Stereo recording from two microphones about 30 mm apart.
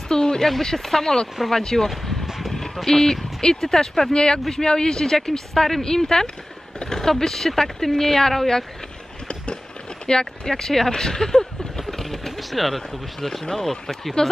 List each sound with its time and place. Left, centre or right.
0.1 s a sound: left
0.4 s speech: centre
2.5 s a sound: centre
3.3 s speech: centre
4.1 s a man's voice: left; by 5.8 s centre
5.8 s a man's voice: centre
10.0 s speech: left
11.8 s speech: centre